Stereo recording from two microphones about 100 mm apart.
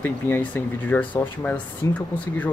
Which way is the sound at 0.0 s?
15° left (ahead or behind).